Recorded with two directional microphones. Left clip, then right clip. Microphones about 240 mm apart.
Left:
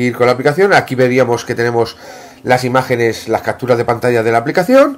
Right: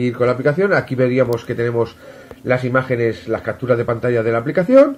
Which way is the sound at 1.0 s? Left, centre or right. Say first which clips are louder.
Left 5 dB; centre.